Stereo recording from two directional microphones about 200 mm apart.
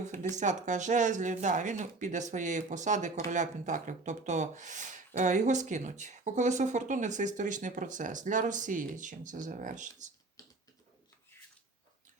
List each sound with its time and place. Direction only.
0.0 s speech: 35° right (ahead or behind)